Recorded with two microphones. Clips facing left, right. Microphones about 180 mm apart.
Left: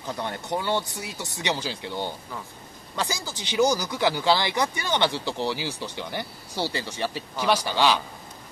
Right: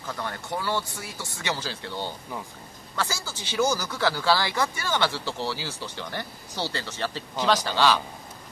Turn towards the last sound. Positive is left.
turn(degrees=15)  # may be behind; listen again after turning